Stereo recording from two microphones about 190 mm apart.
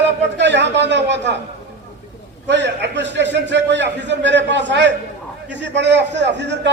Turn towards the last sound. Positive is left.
turn(degrees=-65)  # may be behind; listen again after turning